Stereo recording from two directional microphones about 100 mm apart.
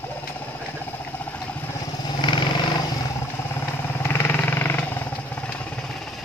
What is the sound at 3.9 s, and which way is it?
Vehicle, 25° left (ahead or behind).